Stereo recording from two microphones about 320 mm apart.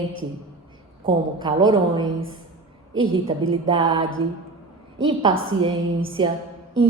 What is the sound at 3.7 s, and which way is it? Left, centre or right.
Speech, centre.